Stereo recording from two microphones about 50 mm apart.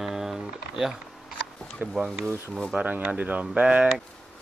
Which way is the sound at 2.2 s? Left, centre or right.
Right.